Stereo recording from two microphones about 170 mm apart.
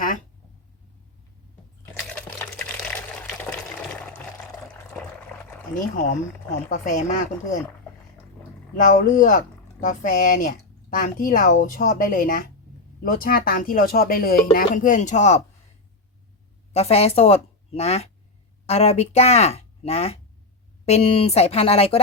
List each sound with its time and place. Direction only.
2.1 s water: 5° left (ahead or behind)
5.9 s speech: 50° left (ahead or behind)
8.7 s speech: 50° left (ahead or behind)
16.7 s a woman's voice: 35° left (ahead or behind)